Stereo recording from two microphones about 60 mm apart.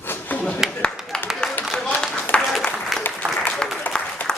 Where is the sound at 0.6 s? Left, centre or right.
Centre.